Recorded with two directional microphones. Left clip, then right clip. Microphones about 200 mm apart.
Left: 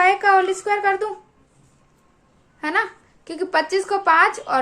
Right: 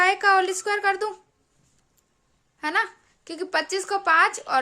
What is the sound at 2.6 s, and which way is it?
A woman's voice, 25° right (ahead or behind).